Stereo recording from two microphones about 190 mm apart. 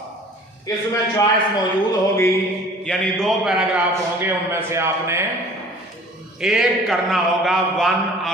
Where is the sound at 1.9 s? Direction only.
15° left (ahead or behind).